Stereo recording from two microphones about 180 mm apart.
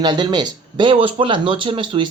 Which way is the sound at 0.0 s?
25° right (ahead or behind).